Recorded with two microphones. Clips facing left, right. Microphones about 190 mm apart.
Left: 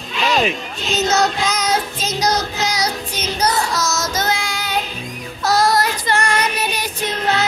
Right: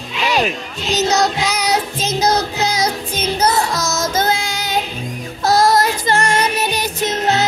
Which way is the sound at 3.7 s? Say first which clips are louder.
Right 2 dB; 55° right (ahead or behind).